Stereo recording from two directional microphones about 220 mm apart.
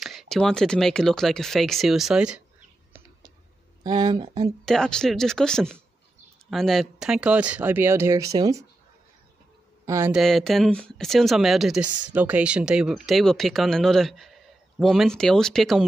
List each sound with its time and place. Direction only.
0.0 s speech: centre (ahead or behind)
3.8 s speech: 20° right (ahead or behind)
4.6 s speech: 5° left (ahead or behind); by 8.6 s 15° right (ahead or behind)
9.8 s a man's voice: 10° right (ahead or behind)
10.1 s speech: centre (ahead or behind)